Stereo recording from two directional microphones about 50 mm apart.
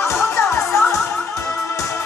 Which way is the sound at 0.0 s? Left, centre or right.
Left.